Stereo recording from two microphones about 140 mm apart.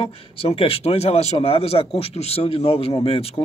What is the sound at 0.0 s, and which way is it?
A man's voice, 40° left (ahead or behind).